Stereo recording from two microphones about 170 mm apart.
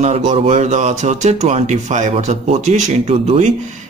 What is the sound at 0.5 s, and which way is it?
Speech, 45° right (ahead or behind).